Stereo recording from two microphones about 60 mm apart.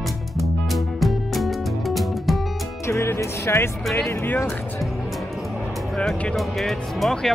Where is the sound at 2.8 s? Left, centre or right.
Left.